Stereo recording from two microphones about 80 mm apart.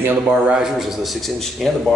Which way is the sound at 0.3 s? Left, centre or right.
Centre.